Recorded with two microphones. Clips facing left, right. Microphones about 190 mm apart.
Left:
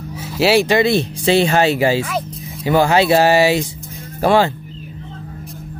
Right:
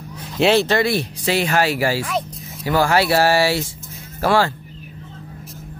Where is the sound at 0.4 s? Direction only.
10° left (ahead or behind).